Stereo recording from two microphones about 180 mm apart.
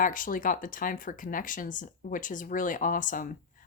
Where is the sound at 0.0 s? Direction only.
50° left (ahead or behind).